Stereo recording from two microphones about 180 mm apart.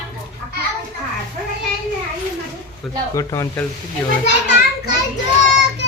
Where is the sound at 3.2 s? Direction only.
15° left (ahead or behind).